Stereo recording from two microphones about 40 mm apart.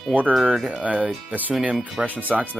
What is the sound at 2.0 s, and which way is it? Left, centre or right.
Speech, right.